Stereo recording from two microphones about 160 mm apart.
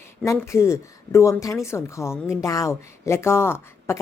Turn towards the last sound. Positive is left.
turn(degrees=15)  # may be behind; listen again after turning